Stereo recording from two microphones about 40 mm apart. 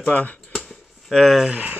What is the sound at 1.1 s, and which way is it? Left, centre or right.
Speech, centre.